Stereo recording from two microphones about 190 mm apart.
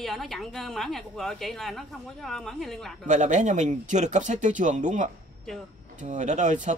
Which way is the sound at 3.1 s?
40° right (ahead or behind).